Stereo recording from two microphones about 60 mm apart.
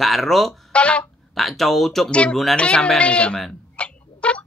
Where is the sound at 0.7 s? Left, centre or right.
Centre.